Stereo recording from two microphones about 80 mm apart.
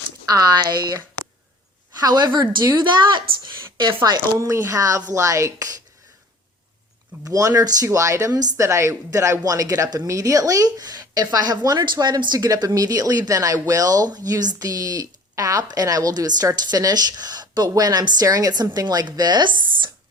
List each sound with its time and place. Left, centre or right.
0.3 s speech: right
2.0 s speech: right
2.4 s a woman's voice: right
2.8 s speech: right
4.4 s a woman's voice: right
7.3 s a woman's voice: right